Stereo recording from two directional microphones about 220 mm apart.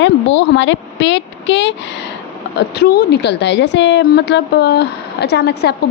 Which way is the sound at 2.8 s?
45° left (ahead or behind).